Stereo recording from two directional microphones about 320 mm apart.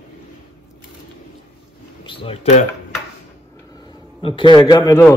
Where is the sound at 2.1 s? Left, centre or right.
Centre.